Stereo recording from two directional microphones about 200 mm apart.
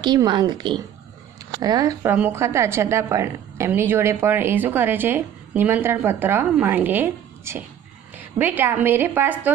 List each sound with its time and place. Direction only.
0.0 s a woman's voice: 20° right (ahead or behind)